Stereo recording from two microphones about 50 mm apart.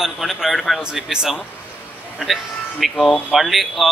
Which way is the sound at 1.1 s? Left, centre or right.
Centre.